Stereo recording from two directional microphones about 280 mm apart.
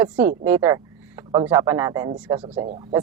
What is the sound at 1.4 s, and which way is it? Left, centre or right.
Speech, centre.